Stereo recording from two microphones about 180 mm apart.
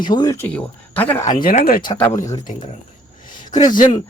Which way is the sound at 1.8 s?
25° left (ahead or behind).